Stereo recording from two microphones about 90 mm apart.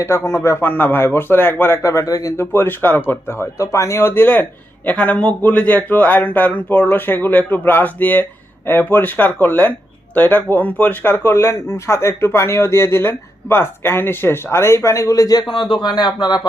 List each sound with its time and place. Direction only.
0.3 s speech: 30° left (ahead or behind)
2.4 s speech: 25° left (ahead or behind); by 15.4 s 40° left (ahead or behind)
15.7 s speech: 55° left (ahead or behind)